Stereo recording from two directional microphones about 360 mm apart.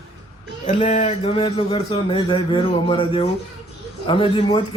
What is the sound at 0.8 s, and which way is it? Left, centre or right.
Speech, centre.